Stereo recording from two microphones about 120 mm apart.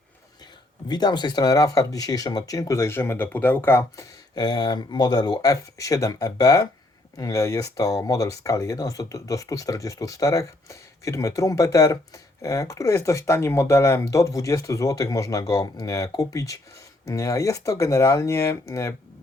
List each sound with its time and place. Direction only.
0.9 s speech: 35° left (ahead or behind)